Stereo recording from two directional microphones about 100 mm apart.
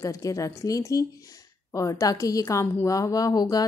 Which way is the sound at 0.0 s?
35° left (ahead or behind).